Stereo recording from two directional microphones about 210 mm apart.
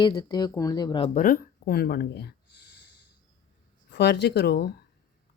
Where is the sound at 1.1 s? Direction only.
40° left (ahead or behind).